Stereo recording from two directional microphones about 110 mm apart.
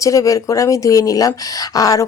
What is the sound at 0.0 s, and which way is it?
Speech, 30° left (ahead or behind).